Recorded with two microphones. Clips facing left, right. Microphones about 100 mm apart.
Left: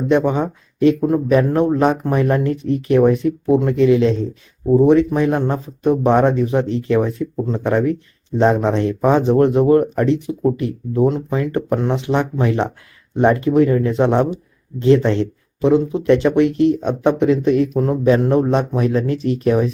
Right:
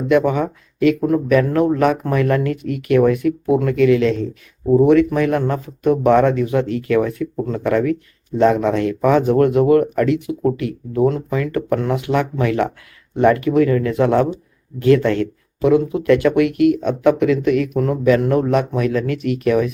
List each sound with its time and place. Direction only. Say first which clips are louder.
0.1 s speech: right 1 dB; 25° left (ahead or behind)